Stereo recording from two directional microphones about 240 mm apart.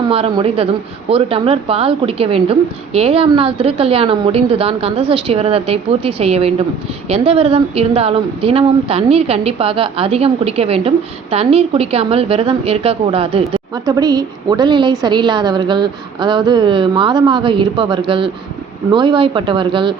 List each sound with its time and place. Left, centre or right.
0.1 s a woman's voice: right